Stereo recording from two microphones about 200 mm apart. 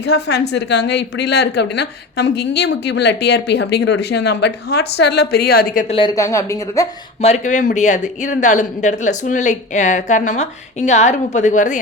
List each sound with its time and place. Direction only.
0.0 s a woman's voice: 55° left (ahead or behind)
5.9 s speech: 20° left (ahead or behind)
7.2 s speech: 30° left (ahead or behind)